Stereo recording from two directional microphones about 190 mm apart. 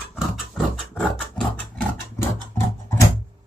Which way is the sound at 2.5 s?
15° left (ahead or behind).